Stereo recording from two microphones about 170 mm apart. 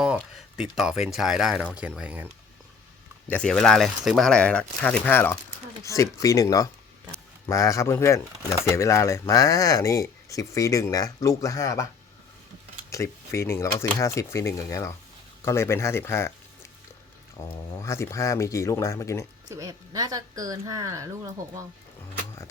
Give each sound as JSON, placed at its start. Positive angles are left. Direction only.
{"t": 0.0, "sound": "speech", "side_deg": -5}
{"t": 3.2, "sound": "speech", "side_deg": 5}
{"t": 12.9, "sound": "speech", "side_deg": 15}
{"t": 17.4, "sound": "speech", "side_deg": 15}
{"t": 19.5, "sound": "speech", "side_deg": -20}